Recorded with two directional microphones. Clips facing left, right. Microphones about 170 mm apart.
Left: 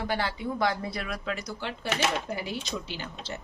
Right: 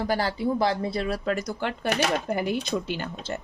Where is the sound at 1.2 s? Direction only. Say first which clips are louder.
Right 6 dB; 50° right (ahead or behind).